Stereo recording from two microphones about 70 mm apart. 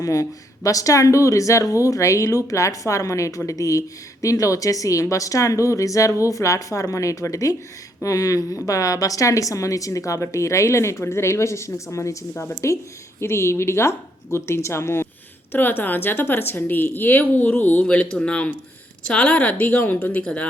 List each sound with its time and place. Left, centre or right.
0.0 s a woman's voice: left
15.5 s a woman's voice: left
17.8 s a woman's voice: centre